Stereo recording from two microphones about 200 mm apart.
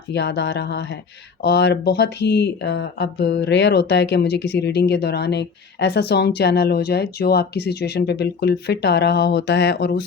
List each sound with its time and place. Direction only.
0.1 s speech: 60° left (ahead or behind)